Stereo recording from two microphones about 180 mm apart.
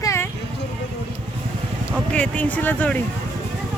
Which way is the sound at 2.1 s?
5° left (ahead or behind).